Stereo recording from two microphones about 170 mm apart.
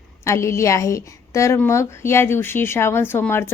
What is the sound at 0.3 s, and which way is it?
A woman's voice, 15° left (ahead or behind).